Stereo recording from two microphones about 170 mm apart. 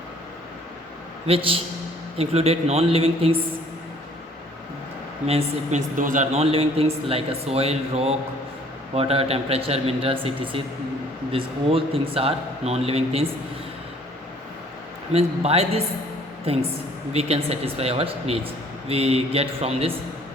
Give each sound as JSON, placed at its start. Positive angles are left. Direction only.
{"t": 1.3, "sound": "speech", "side_deg": -35}
{"t": 5.2, "sound": "speech", "side_deg": -40}
{"t": 15.1, "sound": "speech", "side_deg": -35}